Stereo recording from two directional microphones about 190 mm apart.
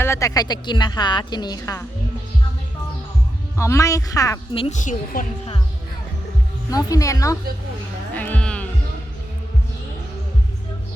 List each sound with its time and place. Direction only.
0.0 s a woman's voice: 15° left (ahead or behind)
3.6 s speech: 15° left (ahead or behind)
4.5 s a woman's voice: 35° left (ahead or behind)
6.7 s speech: 20° left (ahead or behind)
8.1 s music: 10° left (ahead or behind)